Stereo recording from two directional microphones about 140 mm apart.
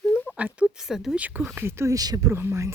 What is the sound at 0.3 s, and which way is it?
Speech, 10° right (ahead or behind).